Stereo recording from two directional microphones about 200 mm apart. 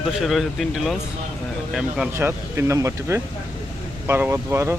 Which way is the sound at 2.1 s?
10° right (ahead or behind).